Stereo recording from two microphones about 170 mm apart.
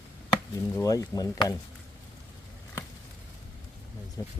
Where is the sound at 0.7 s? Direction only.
20° left (ahead or behind).